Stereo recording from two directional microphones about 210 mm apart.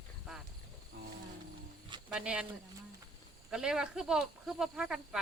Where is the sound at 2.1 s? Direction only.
5° right (ahead or behind).